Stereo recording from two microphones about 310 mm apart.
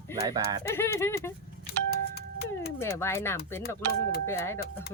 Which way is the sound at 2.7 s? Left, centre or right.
Centre.